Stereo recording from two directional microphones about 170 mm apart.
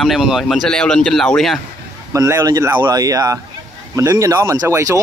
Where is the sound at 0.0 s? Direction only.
Centre (ahead or behind).